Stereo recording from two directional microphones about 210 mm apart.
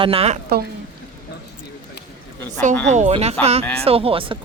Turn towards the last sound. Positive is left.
turn(degrees=-25)  # may be behind; listen again after turning